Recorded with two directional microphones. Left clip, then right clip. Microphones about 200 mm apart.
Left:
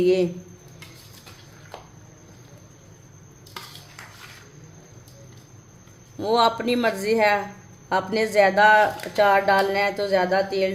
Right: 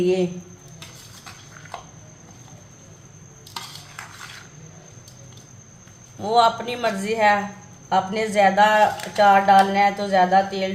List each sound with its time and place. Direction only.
0.0 s speech: 50° left (ahead or behind)
6.2 s speech: 45° left (ahead or behind)